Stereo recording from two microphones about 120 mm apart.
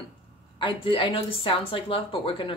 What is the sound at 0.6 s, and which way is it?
A woman's voice, 45° left (ahead or behind).